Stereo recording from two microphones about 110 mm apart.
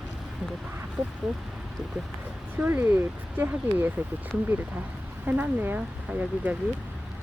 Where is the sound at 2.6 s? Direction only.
15° right (ahead or behind).